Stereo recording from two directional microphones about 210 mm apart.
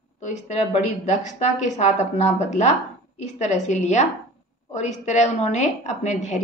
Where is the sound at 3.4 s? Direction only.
35° left (ahead or behind).